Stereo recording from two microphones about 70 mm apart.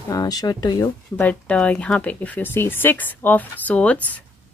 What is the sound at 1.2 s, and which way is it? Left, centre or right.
Speech, centre.